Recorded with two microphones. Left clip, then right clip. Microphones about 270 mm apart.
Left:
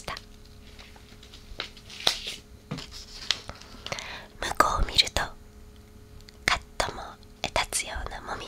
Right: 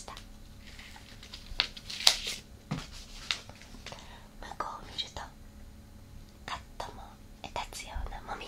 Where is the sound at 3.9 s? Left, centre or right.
Left.